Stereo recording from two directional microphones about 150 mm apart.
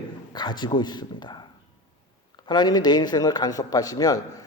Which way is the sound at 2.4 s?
30° left (ahead or behind).